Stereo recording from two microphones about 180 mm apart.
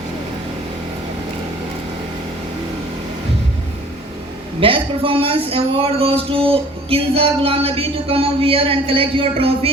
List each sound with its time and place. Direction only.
4.6 s speech: 30° right (ahead or behind)